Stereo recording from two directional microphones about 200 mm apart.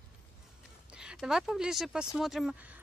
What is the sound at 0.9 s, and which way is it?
Speech, 5° right (ahead or behind).